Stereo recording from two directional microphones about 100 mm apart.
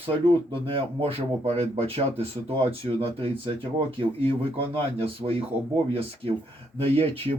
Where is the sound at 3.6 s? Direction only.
55° right (ahead or behind).